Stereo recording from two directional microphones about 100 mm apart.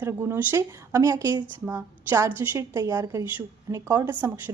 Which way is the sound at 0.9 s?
30° right (ahead or behind).